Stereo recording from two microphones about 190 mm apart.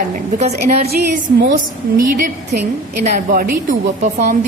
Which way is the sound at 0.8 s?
55° right (ahead or behind).